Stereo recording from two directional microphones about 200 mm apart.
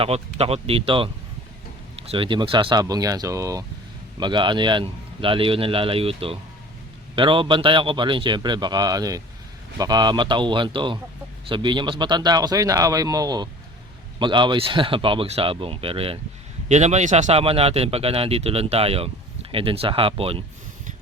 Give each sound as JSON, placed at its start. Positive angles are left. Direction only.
{"t": 0.0, "sound": "speech", "side_deg": -30}